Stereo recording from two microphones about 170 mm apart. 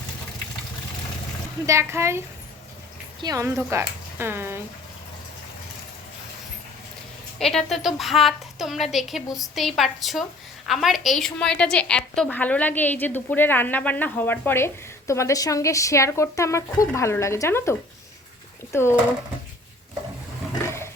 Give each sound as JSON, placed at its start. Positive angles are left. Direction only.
{"t": 1.6, "sound": "a woman's voice", "side_deg": -15}
{"t": 7.3, "sound": "a woman's voice", "side_deg": 0}
{"t": 20.7, "sound": "roaring cats", "side_deg": 15}